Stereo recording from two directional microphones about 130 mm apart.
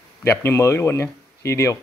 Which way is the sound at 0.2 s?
20° left (ahead or behind).